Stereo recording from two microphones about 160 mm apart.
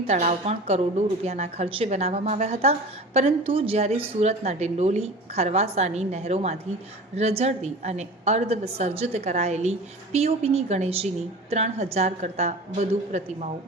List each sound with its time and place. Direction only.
0.1 s a woman's voice: 45° right (ahead or behind)